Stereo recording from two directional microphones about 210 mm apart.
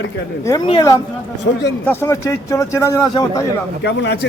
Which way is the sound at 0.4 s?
15° left (ahead or behind).